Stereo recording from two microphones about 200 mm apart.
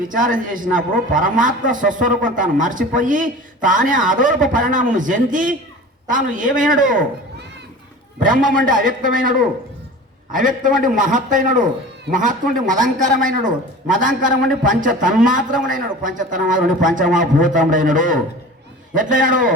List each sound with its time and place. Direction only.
0.0 s a man's voice: 45° right (ahead or behind)
8.6 s a man's voice: 45° right (ahead or behind)